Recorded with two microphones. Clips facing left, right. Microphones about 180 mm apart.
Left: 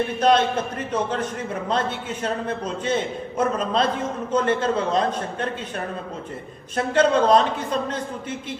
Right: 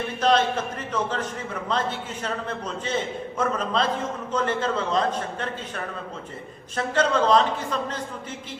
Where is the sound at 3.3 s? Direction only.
20° left (ahead or behind).